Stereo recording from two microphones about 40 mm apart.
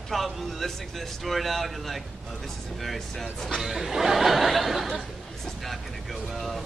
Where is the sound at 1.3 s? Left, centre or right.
Centre.